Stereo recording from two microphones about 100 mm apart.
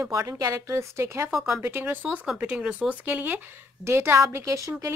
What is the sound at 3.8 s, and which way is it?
Speech, 25° right (ahead or behind).